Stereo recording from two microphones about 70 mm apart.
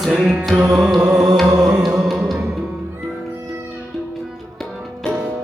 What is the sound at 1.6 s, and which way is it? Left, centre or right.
Music, centre.